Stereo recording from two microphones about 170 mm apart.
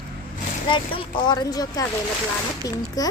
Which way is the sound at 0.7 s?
30° left (ahead or behind).